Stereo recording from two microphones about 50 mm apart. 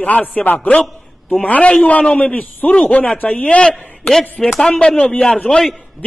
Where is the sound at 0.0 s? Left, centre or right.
Left.